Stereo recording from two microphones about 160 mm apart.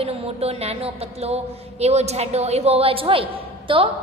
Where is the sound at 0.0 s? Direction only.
40° right (ahead or behind).